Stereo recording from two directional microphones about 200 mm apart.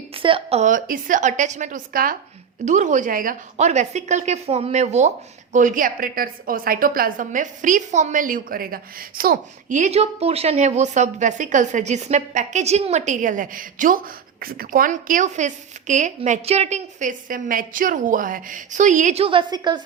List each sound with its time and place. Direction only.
0.1 s a woman's voice: 25° right (ahead or behind)